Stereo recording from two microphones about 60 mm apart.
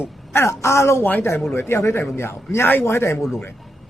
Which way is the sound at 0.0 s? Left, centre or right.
Left.